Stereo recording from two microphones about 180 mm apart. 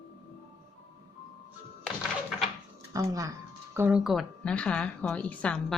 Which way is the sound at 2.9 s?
20° right (ahead or behind).